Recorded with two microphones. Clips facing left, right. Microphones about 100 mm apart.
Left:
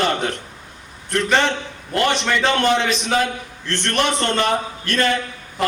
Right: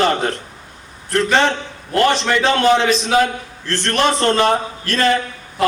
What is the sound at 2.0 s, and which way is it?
A man's voice, 35° right (ahead or behind).